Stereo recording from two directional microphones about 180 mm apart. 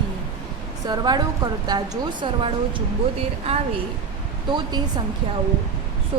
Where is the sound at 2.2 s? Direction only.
25° right (ahead or behind).